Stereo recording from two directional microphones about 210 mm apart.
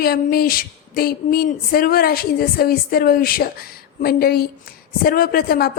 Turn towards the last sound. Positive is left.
turn(degrees=45)  # may be behind; listen again after turning